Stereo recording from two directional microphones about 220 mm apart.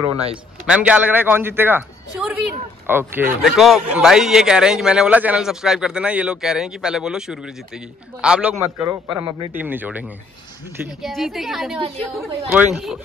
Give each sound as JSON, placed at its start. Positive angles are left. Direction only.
{"t": 0.7, "sound": "a man's voice", "side_deg": -5}